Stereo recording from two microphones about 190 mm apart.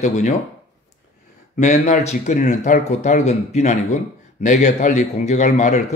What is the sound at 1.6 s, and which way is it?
Speech, 35° left (ahead or behind).